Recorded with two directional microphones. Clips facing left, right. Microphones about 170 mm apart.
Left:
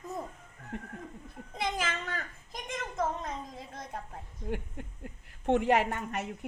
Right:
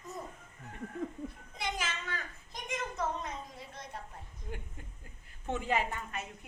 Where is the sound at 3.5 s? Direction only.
50° left (ahead or behind).